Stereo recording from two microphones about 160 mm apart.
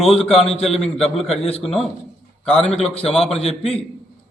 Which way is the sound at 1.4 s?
40° left (ahead or behind).